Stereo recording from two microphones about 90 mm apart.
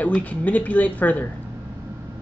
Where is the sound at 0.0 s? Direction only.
15° left (ahead or behind).